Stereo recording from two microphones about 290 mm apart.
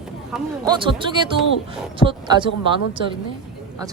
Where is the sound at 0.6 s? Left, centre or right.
Centre.